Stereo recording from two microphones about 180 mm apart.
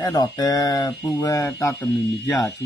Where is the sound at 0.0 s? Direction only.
20° left (ahead or behind).